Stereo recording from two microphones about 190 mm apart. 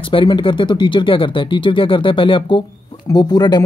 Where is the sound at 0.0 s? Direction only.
25° left (ahead or behind).